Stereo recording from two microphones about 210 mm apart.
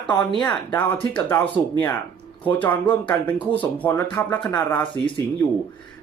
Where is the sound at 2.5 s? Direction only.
5° left (ahead or behind).